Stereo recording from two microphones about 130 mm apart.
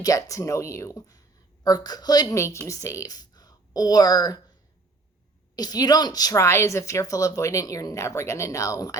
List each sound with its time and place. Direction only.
0.0 s a woman's voice: 25° left (ahead or behind)
5.5 s a woman's voice: 30° left (ahead or behind)